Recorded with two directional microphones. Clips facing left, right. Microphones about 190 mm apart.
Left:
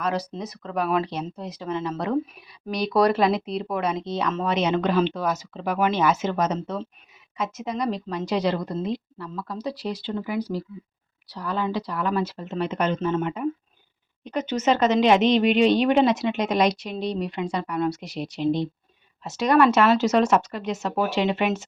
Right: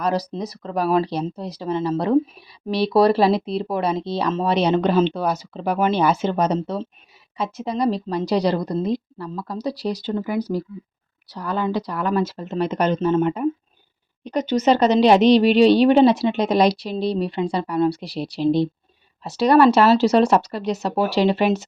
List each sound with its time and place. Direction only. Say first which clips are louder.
0.0 s speech: right 4 dB; 35° right (ahead or behind)